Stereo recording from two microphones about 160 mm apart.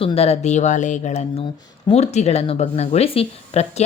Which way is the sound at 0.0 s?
40° left (ahead or behind).